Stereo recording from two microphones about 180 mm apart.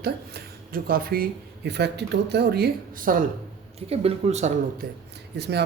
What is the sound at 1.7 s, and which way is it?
Speech, 70° right (ahead or behind).